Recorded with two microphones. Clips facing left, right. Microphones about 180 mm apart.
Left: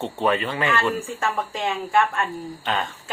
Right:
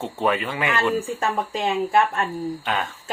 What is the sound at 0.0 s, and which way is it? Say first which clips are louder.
Speech: left 1 dB; 10° right (ahead or behind).